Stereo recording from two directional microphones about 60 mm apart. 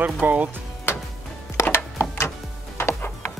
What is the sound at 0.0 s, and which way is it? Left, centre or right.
Speech, right.